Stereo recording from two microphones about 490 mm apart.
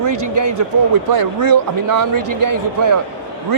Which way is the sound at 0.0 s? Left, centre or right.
Right.